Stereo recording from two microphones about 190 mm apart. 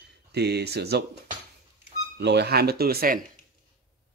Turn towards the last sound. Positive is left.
turn(degrees=-55)  # may be behind; listen again after turning